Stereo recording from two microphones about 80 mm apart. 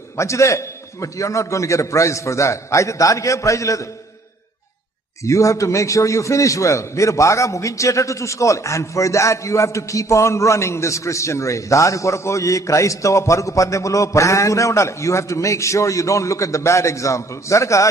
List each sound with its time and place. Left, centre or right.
0.2 s a man's voice: left
5.2 s a man's voice: left